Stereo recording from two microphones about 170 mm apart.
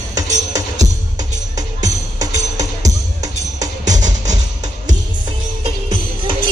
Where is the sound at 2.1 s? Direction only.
20° right (ahead or behind).